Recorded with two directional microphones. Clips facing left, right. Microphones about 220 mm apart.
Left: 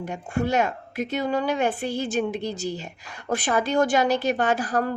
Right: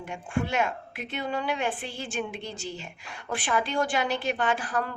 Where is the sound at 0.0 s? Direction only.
40° left (ahead or behind).